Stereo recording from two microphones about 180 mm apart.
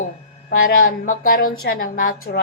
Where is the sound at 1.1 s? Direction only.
55° left (ahead or behind).